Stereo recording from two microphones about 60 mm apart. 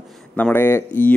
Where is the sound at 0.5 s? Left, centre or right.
Left.